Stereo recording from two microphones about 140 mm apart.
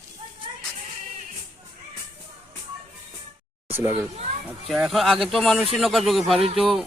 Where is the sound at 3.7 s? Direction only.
15° right (ahead or behind).